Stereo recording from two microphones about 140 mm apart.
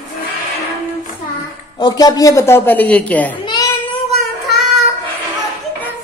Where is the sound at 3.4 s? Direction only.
25° left (ahead or behind).